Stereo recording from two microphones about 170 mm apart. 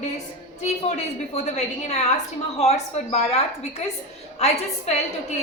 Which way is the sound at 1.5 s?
40° left (ahead or behind).